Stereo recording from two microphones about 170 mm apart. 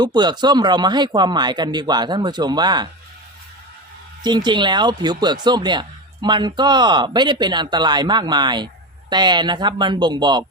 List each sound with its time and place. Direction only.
0.0 s speech: 25° right (ahead or behind)
4.2 s speech: 25° right (ahead or behind)